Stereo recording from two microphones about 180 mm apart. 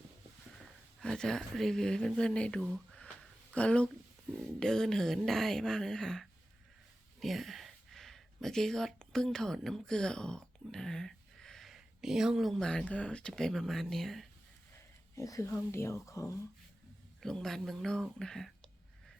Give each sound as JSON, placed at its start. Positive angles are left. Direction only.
{"t": 1.0, "sound": "speech", "side_deg": 5}
{"t": 2.6, "sound": "a sound", "side_deg": 0}
{"t": 3.5, "sound": "speech", "side_deg": 5}
{"t": 15.1, "sound": "speech", "side_deg": 15}
{"t": 17.2, "sound": "speech", "side_deg": 5}